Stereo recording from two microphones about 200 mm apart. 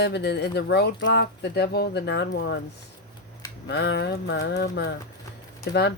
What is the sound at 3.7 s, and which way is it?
Speech, 55° left (ahead or behind).